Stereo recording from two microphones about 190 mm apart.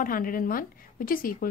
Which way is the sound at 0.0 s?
45° left (ahead or behind).